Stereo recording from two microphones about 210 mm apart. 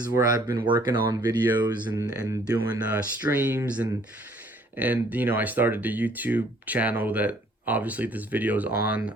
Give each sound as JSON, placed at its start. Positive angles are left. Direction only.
{"t": 0.0, "sound": "speech", "side_deg": -20}